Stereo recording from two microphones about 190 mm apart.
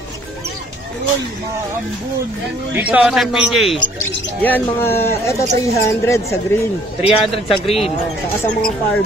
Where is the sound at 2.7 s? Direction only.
5° right (ahead or behind).